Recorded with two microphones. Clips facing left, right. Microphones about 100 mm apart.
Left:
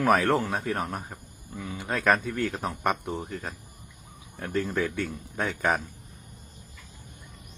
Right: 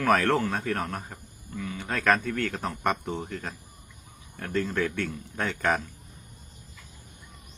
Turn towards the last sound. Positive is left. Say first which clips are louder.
# even
turn(degrees=10)  # may be behind; listen again after turning